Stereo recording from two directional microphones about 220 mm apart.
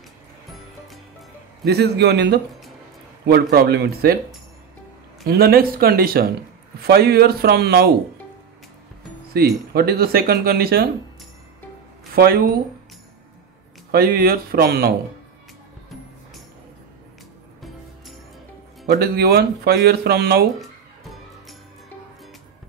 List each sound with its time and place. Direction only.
1.7 s speech: 50° right (ahead or behind)
5.2 s speech: 45° right (ahead or behind)
9.4 s speech: 45° right (ahead or behind)
12.2 s speech: 45° right (ahead or behind)
13.9 s speech: 45° right (ahead or behind)
17.6 s music: centre (ahead or behind)
18.9 s speech: 45° right (ahead or behind)